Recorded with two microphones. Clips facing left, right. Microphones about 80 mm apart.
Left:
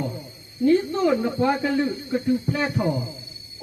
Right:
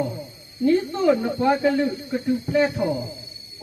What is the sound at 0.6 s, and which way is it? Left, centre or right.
Speech, centre.